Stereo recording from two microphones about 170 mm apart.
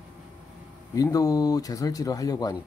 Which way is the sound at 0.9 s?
20° left (ahead or behind).